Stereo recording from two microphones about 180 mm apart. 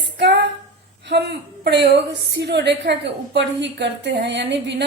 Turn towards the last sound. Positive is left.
turn(degrees=-75)  # may be behind; listen again after turning